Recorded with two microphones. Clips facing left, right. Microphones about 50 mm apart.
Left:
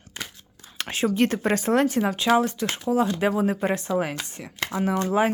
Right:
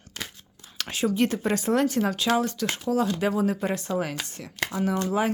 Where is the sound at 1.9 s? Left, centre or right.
Left.